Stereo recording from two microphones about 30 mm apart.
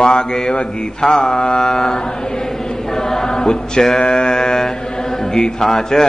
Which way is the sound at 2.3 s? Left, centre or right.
Centre.